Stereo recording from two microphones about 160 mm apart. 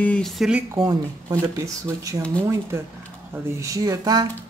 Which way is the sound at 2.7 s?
15° right (ahead or behind).